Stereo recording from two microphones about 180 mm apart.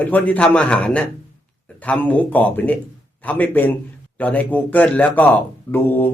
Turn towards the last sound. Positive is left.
turn(degrees=10)  # may be behind; listen again after turning